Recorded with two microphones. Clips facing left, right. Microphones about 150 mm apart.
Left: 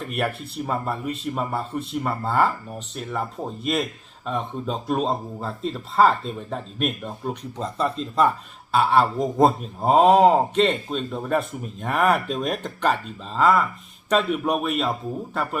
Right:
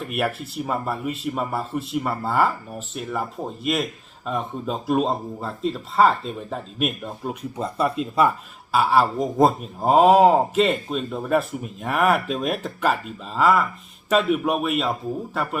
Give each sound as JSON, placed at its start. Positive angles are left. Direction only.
{"t": 0.0, "sound": "speech", "side_deg": 0}